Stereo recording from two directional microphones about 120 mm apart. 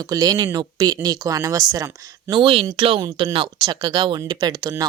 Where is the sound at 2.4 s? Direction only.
45° right (ahead or behind).